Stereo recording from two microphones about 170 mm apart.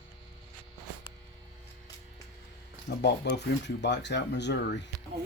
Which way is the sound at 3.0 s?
85° left.